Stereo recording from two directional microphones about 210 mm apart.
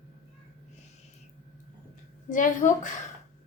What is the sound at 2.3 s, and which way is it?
Speech, 35° left (ahead or behind).